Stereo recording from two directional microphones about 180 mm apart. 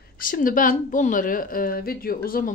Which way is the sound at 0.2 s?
50° left (ahead or behind).